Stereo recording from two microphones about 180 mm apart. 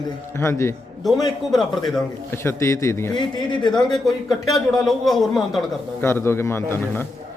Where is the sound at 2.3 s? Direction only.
15° left (ahead or behind).